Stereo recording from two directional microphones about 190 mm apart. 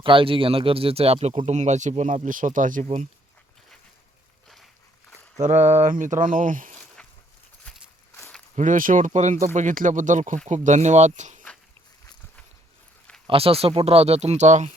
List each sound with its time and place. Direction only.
0.0 s speech: 25° right (ahead or behind)
5.4 s speech: 40° right (ahead or behind)
7.0 s a sound: 5° left (ahead or behind)
8.1 s walk: 5° left (ahead or behind)
8.5 s speech: 40° right (ahead or behind)
13.2 s speech: 30° right (ahead or behind)